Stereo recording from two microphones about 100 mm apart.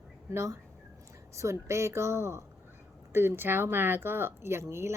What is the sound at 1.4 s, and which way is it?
Speech, 30° right (ahead or behind).